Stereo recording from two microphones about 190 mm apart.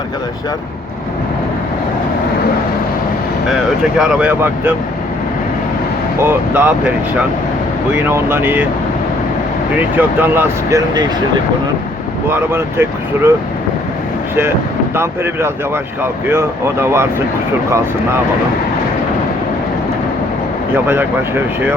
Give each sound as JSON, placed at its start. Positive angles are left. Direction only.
{"t": 3.5, "sound": "speech", "side_deg": -5}
{"t": 6.2, "sound": "speech", "side_deg": -10}
{"t": 10.0, "sound": "speech", "side_deg": -10}
{"t": 12.3, "sound": "speech", "side_deg": -10}
{"t": 14.9, "sound": "speech", "side_deg": -15}
{"t": 20.7, "sound": "speech", "side_deg": -10}